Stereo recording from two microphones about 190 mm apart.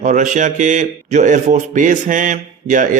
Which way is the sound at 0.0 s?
40° right (ahead or behind).